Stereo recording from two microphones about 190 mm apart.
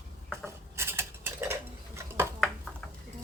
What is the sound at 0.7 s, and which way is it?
Dishes, 15° right (ahead or behind).